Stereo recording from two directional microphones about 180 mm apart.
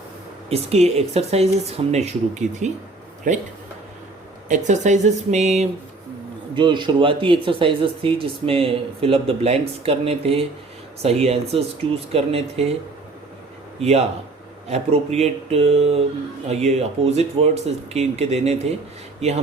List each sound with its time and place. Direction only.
0.5 s speech: 35° right (ahead or behind)
4.4 s speech: 45° right (ahead or behind)
6.5 s speech: 25° right (ahead or behind)
14.7 s speech: 35° right (ahead or behind)